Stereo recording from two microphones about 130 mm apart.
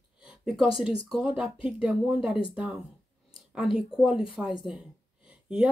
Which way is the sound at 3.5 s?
5° right (ahead or behind).